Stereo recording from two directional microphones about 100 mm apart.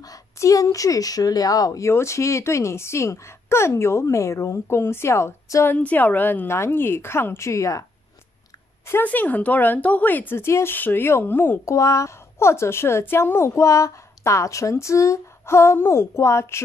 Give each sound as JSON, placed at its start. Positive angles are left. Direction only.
{"t": 0.0, "sound": "a woman's voice", "side_deg": 35}
{"t": 5.8, "sound": "a woman's voice", "side_deg": 15}
{"t": 8.8, "sound": "a woman's voice", "side_deg": 20}
{"t": 11.7, "sound": "a woman's voice", "side_deg": 30}